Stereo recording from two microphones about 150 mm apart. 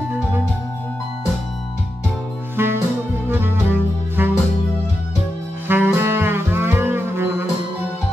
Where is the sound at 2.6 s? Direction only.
15° right (ahead or behind).